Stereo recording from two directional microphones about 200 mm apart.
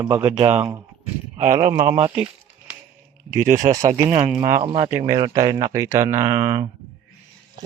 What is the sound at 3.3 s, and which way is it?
Speech, 15° right (ahead or behind).